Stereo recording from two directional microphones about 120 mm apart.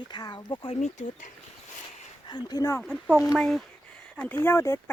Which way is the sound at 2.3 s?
35° left (ahead or behind).